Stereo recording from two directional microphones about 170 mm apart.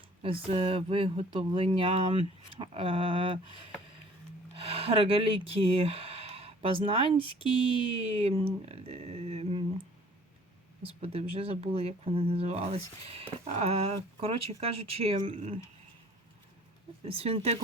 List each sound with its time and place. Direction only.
0.2 s speech: 30° right (ahead or behind)
4.6 s speech: 35° right (ahead or behind)
10.8 s speech: 35° right (ahead or behind)
17.1 s speech: 35° right (ahead or behind)